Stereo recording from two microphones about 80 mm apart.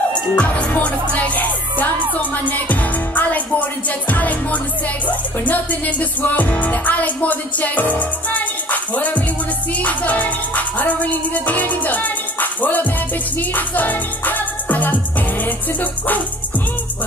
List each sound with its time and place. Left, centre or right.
0.1 s music: centre